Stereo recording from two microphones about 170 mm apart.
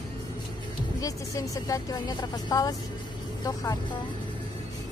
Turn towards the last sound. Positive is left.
turn(degrees=20)  # may be behind; listen again after turning